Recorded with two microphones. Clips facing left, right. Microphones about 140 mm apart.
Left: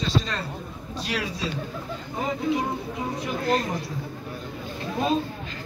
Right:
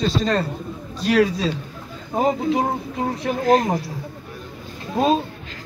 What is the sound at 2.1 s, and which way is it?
Speech, 65° right (ahead or behind).